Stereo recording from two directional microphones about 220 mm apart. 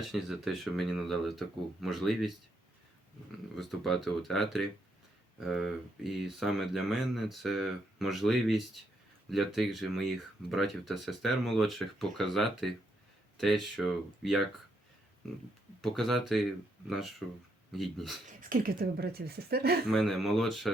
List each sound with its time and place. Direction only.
0.1 s speech: centre (ahead or behind)
3.5 s speech: centre (ahead or behind)
15.8 s speech: centre (ahead or behind)
17.7 s speech: centre (ahead or behind)
18.3 s speech: 40° right (ahead or behind)
19.9 s speech: centre (ahead or behind)